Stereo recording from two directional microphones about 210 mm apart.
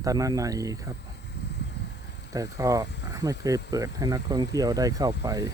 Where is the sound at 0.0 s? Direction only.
15° right (ahead or behind).